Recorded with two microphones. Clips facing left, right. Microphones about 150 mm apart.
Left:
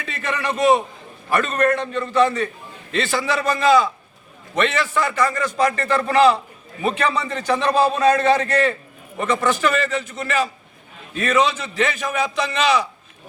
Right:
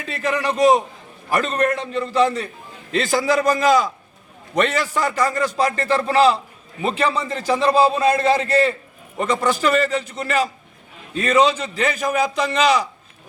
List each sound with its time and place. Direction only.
0.0 s a man's voice: 40° right (ahead or behind)